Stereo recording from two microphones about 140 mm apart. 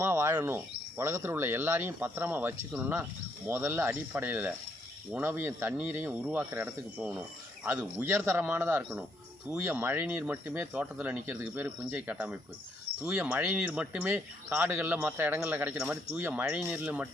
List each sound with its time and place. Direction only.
0.0 s speech: 15° right (ahead or behind)